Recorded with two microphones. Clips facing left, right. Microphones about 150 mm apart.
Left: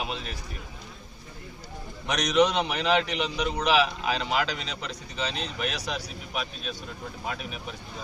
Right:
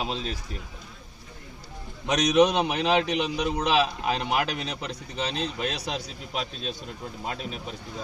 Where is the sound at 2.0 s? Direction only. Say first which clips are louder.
Right 3 dB; 20° right (ahead or behind).